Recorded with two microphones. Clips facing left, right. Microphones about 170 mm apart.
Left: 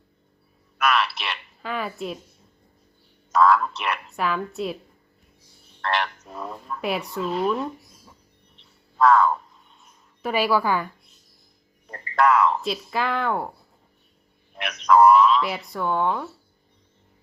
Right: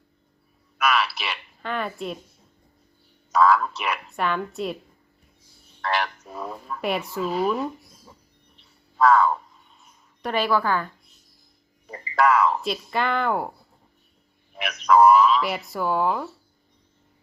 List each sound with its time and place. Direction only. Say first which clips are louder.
0.8 s speech: even; centre (ahead or behind)
3.3 s a woman's voice: even; centre (ahead or behind)
5.8 s speech: even; centre (ahead or behind)
8.5 s frog: even; centre (ahead or behind)
9.8 s a woman's voice: left 1 dB; 5° left (ahead or behind)
11.9 s speech: even; centre (ahead or behind)
14.5 s speech: even; centre (ahead or behind)